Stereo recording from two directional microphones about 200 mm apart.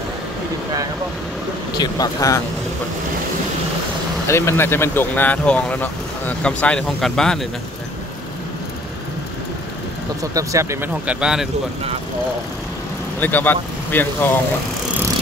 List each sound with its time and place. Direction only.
1.8 s speech: 20° left (ahead or behind)
4.3 s speech: 15° left (ahead or behind)
10.3 s speech: 15° right (ahead or behind)
13.2 s speech: 10° left (ahead or behind)